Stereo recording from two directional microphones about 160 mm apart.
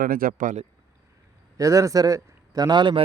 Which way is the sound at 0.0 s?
65° right (ahead or behind).